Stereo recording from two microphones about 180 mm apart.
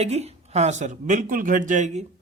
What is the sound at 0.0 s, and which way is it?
A man's voice, 35° right (ahead or behind).